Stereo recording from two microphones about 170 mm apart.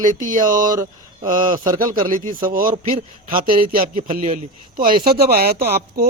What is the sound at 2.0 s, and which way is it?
A man's voice, 50° right (ahead or behind).